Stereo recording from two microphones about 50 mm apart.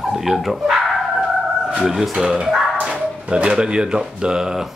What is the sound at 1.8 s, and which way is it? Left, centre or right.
Speech, centre.